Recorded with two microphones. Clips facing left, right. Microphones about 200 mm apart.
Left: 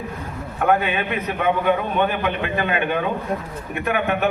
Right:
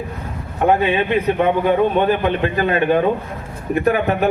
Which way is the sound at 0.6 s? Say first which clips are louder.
Right 4 dB; 25° right (ahead or behind).